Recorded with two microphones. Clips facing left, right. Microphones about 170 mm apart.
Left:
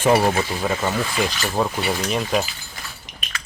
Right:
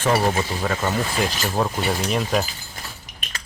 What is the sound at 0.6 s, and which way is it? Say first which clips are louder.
Speech: left 1 dB; 5° left (ahead or behind).